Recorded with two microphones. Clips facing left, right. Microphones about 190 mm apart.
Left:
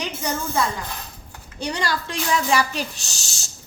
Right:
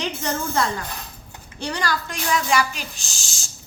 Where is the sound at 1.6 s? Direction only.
20° left (ahead or behind); by 3.4 s 40° left (ahead or behind).